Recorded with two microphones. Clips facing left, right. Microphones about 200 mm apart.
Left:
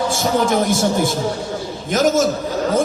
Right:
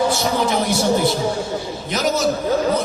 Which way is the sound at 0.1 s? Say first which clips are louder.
Left 2 dB; 50° left (ahead or behind).